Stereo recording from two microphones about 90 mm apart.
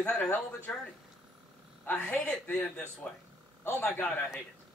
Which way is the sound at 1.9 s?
20° left (ahead or behind).